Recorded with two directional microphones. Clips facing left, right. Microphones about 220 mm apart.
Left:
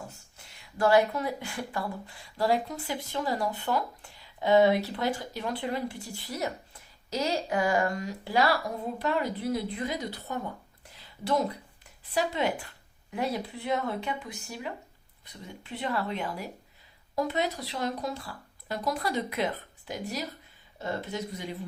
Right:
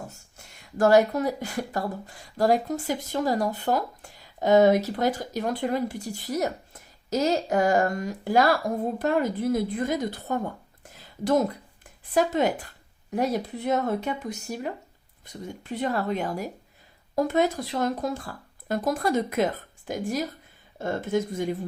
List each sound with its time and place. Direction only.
0.3 s speech: 45° right (ahead or behind)
10.8 s a sound: 45° right (ahead or behind)
12.1 s speech: 45° right (ahead or behind)